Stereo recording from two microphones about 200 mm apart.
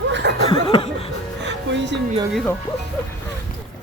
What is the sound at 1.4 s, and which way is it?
Music, 60° right (ahead or behind).